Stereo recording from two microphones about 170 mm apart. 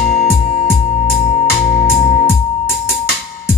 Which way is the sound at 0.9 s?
30° left (ahead or behind).